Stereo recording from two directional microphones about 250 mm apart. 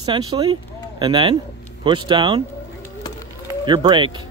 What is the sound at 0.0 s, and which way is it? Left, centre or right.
Speech, centre.